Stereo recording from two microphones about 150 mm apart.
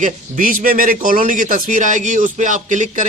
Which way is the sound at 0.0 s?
65° right (ahead or behind).